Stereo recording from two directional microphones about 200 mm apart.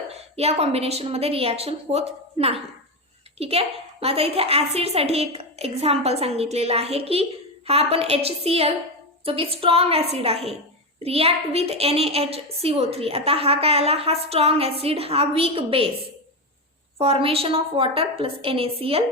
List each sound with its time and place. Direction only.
0.1 s a woman's voice: 30° right (ahead or behind)
17.0 s a woman's voice: 30° right (ahead or behind)